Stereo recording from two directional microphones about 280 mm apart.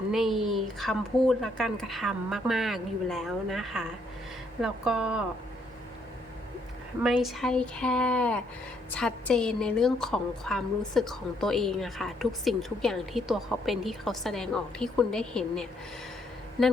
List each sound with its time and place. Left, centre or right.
0.1 s a woman's voice: centre
7.0 s a woman's voice: centre